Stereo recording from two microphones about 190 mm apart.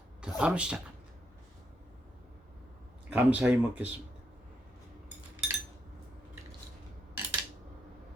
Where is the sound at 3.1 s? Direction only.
5° right (ahead or behind).